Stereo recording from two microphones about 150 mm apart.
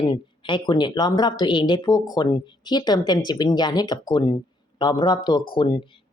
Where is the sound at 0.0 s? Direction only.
30° left (ahead or behind).